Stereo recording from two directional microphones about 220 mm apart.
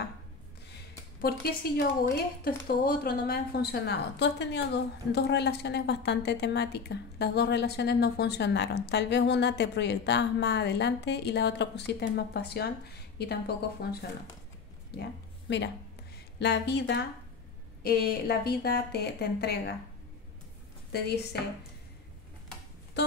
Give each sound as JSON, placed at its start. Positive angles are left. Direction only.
{"t": 1.2, "sound": "a woman's voice", "side_deg": 45}
{"t": 14.9, "sound": "a woman's voice", "side_deg": 45}
{"t": 20.9, "sound": "a woman's voice", "side_deg": 45}
{"t": 23.0, "sound": "music", "side_deg": 50}